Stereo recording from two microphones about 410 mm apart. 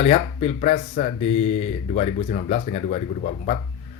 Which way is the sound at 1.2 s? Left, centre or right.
Left.